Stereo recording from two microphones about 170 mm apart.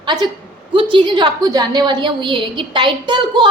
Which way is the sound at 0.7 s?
30° right (ahead or behind).